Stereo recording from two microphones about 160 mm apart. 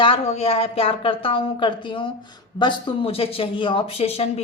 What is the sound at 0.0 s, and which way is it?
Speech, 35° left (ahead or behind).